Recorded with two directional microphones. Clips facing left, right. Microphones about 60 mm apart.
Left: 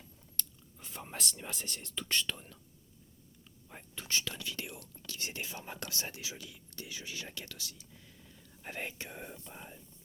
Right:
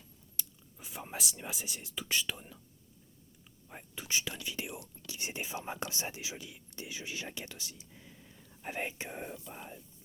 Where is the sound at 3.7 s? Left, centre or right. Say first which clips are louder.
Right 1 dB; centre.